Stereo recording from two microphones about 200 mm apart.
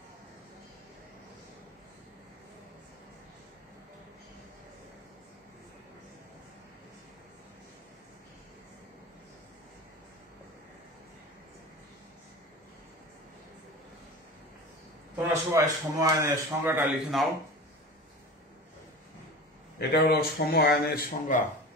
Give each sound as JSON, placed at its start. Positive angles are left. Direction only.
{"t": 15.1, "sound": "speech", "side_deg": -15}
{"t": 17.1, "sound": "speech", "side_deg": 0}
{"t": 19.9, "sound": "speech", "side_deg": 50}